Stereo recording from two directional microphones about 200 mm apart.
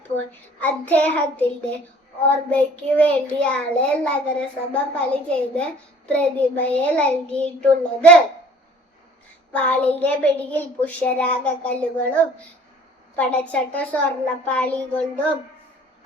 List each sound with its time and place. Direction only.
0.3 s a child's voice: 10° left (ahead or behind)
9.5 s a child's voice: 5° left (ahead or behind)